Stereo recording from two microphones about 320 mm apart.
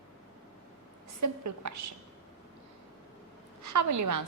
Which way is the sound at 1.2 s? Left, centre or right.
Right.